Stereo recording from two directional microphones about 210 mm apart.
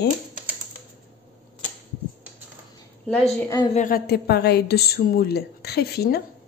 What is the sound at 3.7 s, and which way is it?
A woman's voice, 40° left (ahead or behind).